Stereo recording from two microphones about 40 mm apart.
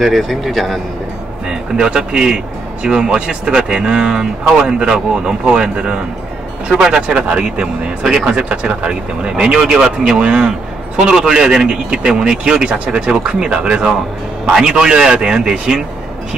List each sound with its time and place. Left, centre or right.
0.0 s speech: centre
1.8 s a man's voice: right
12.6 s a man's voice: right
14.4 s a man's voice: centre